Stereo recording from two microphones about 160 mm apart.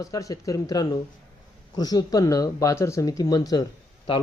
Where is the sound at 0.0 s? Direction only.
20° left (ahead or behind).